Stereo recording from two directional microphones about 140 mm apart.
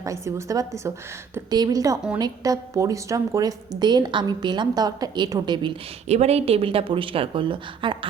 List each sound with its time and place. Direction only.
0.0 s a woman's voice: 20° right (ahead or behind)
6.1 s a woman's voice: 50° right (ahead or behind)